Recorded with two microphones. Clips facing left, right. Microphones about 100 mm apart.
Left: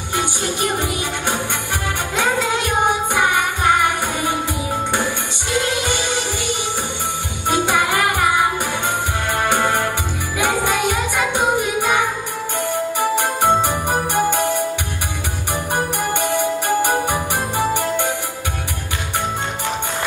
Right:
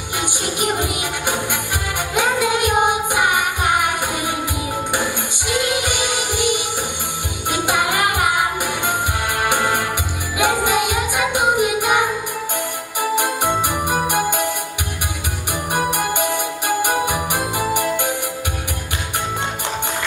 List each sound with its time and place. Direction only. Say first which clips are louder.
0.2 s music: even; 15° right (ahead or behind)
5.5 s music: even; 15° right (ahead or behind)
9.5 s music: left 2 dB; 15° right (ahead or behind)
13.1 s music: left 1 dB; 15° right (ahead or behind)
15.7 s music: right 1 dB; 15° right (ahead or behind)